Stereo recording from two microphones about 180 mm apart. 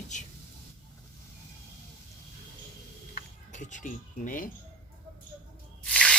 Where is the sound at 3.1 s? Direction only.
45° left (ahead or behind).